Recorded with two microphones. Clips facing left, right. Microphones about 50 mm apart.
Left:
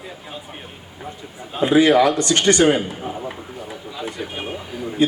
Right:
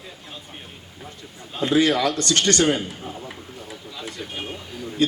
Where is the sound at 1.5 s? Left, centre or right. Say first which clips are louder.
Left 5 dB; centre.